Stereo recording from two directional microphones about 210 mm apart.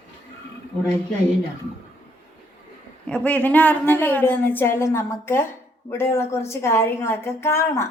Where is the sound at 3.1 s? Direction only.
5° left (ahead or behind).